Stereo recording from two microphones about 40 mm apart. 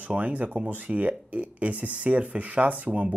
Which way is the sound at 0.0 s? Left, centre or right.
Right.